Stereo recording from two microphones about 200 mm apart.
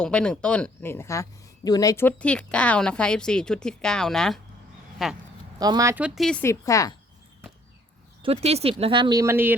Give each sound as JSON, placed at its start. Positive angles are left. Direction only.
{"t": 0.0, "sound": "speech", "side_deg": 5}
{"t": 5.5, "sound": "speech", "side_deg": -20}
{"t": 6.1, "sound": "speech", "side_deg": 0}
{"t": 6.4, "sound": "a woman's voice", "side_deg": 15}
{"t": 8.2, "sound": "speech", "side_deg": -30}